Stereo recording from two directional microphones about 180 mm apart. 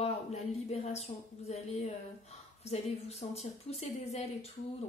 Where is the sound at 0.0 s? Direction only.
35° left (ahead or behind).